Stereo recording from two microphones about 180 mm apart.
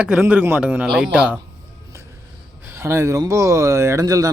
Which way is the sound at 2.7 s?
15° right (ahead or behind).